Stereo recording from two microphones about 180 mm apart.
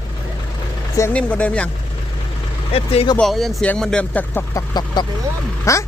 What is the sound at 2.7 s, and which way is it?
Speech, 35° left (ahead or behind).